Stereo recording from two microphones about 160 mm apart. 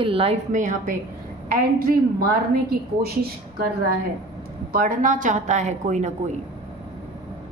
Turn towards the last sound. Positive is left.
turn(degrees=-45)  # may be behind; listen again after turning